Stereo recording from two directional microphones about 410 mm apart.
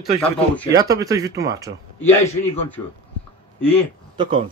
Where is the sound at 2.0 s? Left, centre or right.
Centre.